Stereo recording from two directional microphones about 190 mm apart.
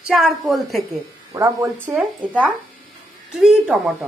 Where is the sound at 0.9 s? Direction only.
15° right (ahead or behind).